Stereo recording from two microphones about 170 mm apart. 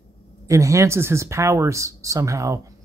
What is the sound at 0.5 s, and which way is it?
Speech, 20° right (ahead or behind).